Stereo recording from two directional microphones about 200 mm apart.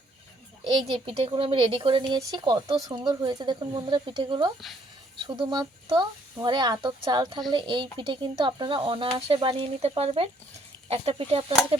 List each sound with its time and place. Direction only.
0.7 s speech: 25° right (ahead or behind)